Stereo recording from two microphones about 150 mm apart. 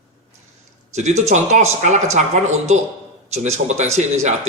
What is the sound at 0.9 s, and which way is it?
Speech, 50° right (ahead or behind).